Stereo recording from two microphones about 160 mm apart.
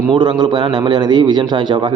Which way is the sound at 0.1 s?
30° right (ahead or behind).